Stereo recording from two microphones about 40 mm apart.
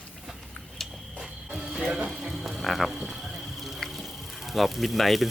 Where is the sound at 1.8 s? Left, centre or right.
Centre.